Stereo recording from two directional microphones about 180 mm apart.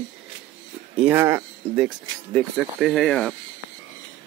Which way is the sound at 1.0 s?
10° right (ahead or behind).